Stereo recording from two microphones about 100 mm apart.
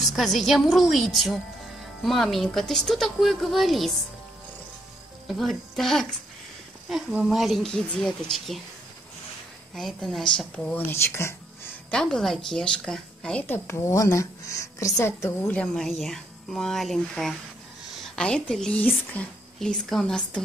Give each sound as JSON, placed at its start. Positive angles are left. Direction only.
{"t": 0.0, "sound": "speech", "side_deg": 0}
{"t": 5.3, "sound": "speech", "side_deg": 0}
{"t": 9.8, "sound": "speech", "side_deg": 0}
{"t": 10.9, "sound": "speech", "side_deg": 25}
{"t": 11.9, "sound": "speech", "side_deg": 5}
{"t": 13.7, "sound": "a woman's voice", "side_deg": 30}
{"t": 15.5, "sound": "speech", "side_deg": 5}